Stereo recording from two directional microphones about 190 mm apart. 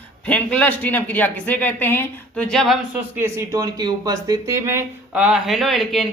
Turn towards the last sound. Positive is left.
turn(degrees=0)  # may be behind; listen again after turning